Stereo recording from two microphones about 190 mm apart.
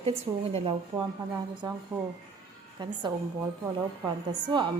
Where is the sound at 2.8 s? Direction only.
25° right (ahead or behind).